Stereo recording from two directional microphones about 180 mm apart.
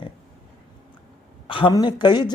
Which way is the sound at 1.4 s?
25° left (ahead or behind).